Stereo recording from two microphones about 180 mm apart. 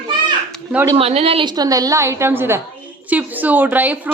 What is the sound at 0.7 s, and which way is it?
Speech, 10° right (ahead or behind).